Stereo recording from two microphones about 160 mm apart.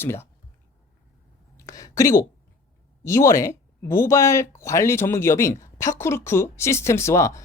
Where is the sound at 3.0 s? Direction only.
20° left (ahead or behind).